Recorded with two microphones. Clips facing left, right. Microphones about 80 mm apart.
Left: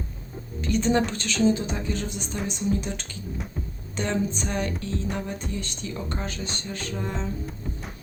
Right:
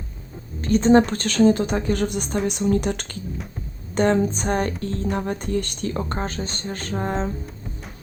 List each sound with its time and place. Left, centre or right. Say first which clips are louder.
0.6 s speech: right 7 dB; right
3.9 s speech: right 8 dB; right